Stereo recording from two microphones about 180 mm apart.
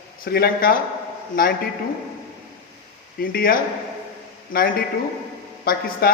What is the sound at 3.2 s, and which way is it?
Speech, 55° left (ahead or behind).